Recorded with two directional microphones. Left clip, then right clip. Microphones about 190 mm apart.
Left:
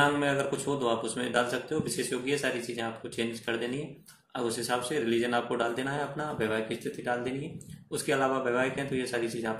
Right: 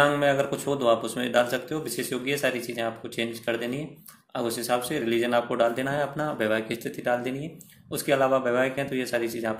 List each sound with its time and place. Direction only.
0.0 s speech: 50° right (ahead or behind)